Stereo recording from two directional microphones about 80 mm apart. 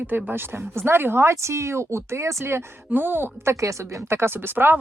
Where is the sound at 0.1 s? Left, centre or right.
Right.